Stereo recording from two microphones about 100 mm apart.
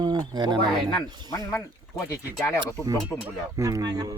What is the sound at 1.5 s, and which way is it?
Speech, 30° left (ahead or behind).